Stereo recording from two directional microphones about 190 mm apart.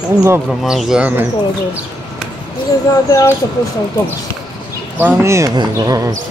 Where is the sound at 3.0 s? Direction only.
20° left (ahead or behind).